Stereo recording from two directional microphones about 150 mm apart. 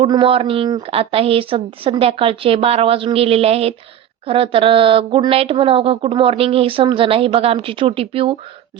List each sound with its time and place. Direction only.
0.1 s speech: 35° right (ahead or behind)